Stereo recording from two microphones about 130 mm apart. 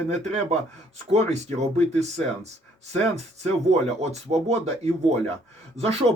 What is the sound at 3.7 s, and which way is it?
Speech, 60° right (ahead or behind).